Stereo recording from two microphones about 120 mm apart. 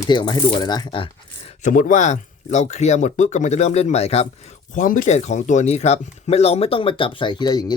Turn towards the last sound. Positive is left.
turn(degrees=35)  # may be behind; listen again after turning